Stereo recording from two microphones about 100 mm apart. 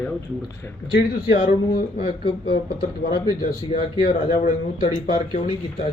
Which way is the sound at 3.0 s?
50° left (ahead or behind).